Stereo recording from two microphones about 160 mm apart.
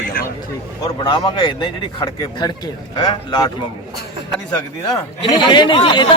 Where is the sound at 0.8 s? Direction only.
25° left (ahead or behind).